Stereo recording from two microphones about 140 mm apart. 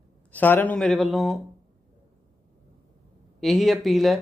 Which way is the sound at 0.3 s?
10° left (ahead or behind).